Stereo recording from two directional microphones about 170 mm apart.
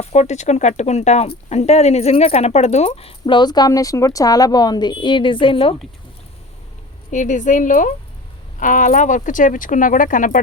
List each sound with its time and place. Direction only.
0.0 s speech: 40° left (ahead or behind)
7.1 s speech: 45° left (ahead or behind)